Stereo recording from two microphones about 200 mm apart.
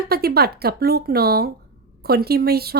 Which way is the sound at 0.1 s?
50° right (ahead or behind).